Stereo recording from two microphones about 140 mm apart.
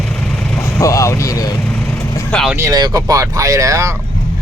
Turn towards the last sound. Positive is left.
turn(degrees=-20)  # may be behind; listen again after turning